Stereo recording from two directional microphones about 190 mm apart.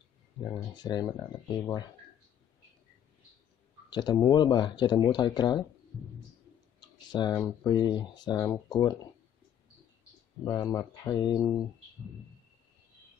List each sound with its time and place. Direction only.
0.4 s speech: 20° left (ahead or behind)
3.9 s speech: 20° left (ahead or behind)
7.1 s speech: 20° left (ahead or behind)
10.4 s speech: 20° left (ahead or behind)